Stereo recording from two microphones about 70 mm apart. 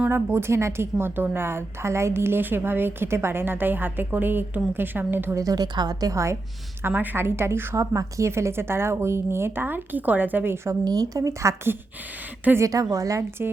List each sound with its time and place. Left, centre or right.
0.1 s a woman's voice: right
5.3 s a woman's voice: right
6.8 s a woman's voice: right
7.8 s a woman's voice: right
8.3 s a woman's voice: right
10.8 s a woman's voice: right
12.5 s a woman's voice: right